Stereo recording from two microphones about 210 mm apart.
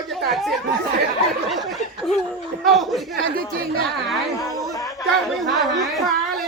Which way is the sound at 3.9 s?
Centre (ahead or behind).